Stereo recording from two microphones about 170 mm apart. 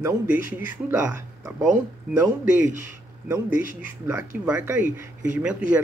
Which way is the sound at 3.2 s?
15° right (ahead or behind).